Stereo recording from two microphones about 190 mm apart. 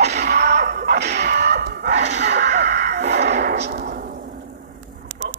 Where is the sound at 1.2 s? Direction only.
60° right (ahead or behind).